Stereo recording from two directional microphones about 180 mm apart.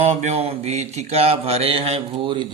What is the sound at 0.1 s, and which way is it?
Mantra, 40° right (ahead or behind).